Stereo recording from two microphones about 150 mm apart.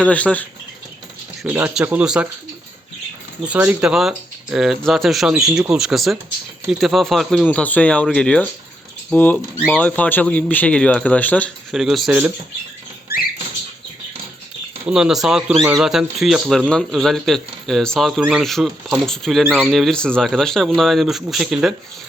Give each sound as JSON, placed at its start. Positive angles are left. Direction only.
{"t": 0.0, "sound": "speech", "side_deg": 10}
{"t": 1.4, "sound": "speech", "side_deg": -10}
{"t": 3.4, "sound": "a man's voice", "side_deg": -10}
{"t": 11.7, "sound": "a man's voice", "side_deg": 0}
{"t": 14.8, "sound": "a man's voice", "side_deg": -5}